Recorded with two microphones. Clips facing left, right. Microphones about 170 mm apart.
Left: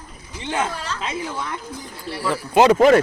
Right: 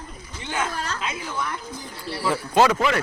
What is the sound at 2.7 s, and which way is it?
Speech, 45° left (ahead or behind).